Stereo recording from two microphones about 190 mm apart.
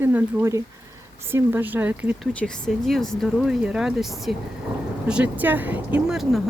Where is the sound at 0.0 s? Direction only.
10° right (ahead or behind).